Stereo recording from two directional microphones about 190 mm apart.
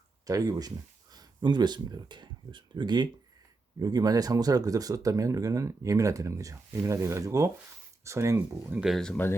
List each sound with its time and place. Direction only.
0.3 s speech: 20° right (ahead or behind); by 9.3 s 5° left (ahead or behind)